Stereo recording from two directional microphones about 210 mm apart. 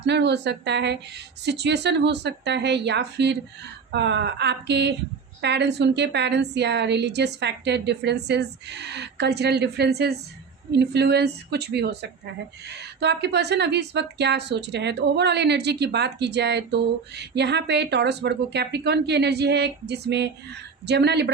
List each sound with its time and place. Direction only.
0.0 s a woman's voice: 55° right (ahead or behind)
13.0 s a woman's voice: 55° right (ahead or behind)